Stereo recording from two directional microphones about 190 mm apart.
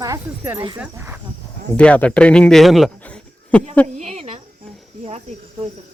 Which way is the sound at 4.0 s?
35° right (ahead or behind).